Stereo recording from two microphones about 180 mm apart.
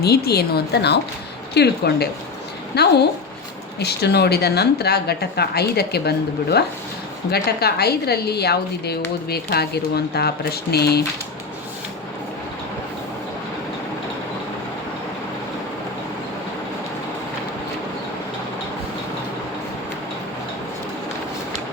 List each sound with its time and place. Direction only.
0.0 s a woman's voice: 60° left (ahead or behind)